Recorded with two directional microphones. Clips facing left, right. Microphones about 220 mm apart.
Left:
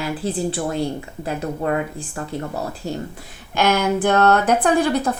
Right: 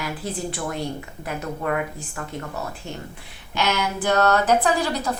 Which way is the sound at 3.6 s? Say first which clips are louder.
Left 6 dB; 55° left (ahead or behind).